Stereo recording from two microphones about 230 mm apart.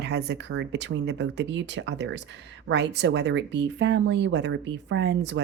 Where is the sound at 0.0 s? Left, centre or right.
Right.